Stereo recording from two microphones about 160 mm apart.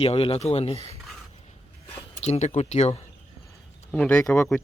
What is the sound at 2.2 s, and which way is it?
Speech, 45° left (ahead or behind).